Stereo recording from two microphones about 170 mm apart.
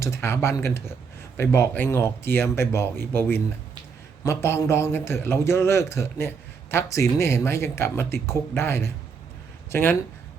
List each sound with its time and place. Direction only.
0.0 s a man's voice: 15° left (ahead or behind)